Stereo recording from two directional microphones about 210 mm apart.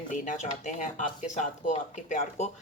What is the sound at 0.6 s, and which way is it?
Speech, 35° left (ahead or behind).